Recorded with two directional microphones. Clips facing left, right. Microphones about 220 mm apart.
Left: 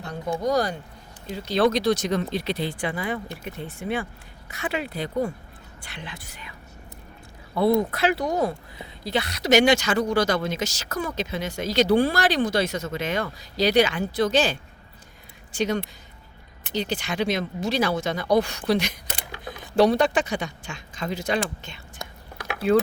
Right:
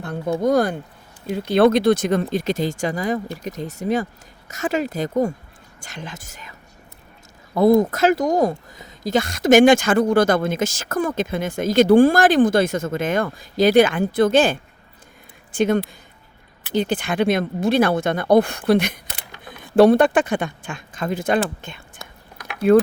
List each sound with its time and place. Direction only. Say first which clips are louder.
0.3 s speech: right 6 dB; 55° right (ahead or behind)
7.5 s speech: right 6 dB; 45° right (ahead or behind); by 22.8 s 60° right (ahead or behind)